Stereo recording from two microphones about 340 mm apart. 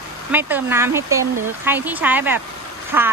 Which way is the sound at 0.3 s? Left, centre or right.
Centre.